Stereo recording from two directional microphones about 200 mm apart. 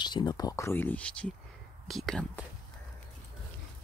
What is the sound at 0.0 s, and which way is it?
Speech, 20° left (ahead or behind).